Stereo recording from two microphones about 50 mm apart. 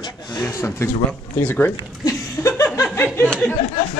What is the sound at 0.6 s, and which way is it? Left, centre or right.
Speech, left.